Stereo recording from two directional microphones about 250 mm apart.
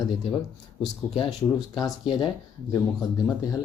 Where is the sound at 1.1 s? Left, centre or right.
Centre.